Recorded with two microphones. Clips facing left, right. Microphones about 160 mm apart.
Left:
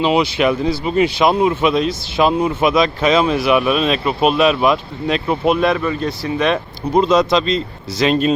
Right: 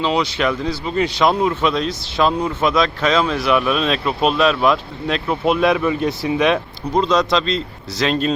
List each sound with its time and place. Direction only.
0.0 s speech: 10° left (ahead or behind); by 6.6 s 5° right (ahead or behind)
6.9 s speech: 10° left (ahead or behind)